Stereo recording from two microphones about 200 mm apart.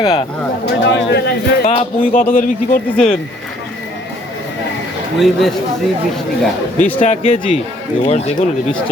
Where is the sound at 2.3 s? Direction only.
45° left (ahead or behind).